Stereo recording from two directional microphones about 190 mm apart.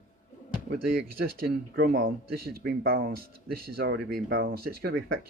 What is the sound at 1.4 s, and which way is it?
Speech, 50° right (ahead or behind).